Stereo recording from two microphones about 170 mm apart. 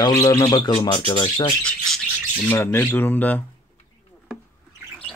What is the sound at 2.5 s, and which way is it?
Speech, 15° left (ahead or behind).